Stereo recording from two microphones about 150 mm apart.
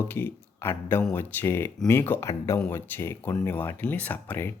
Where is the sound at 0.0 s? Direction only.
15° left (ahead or behind).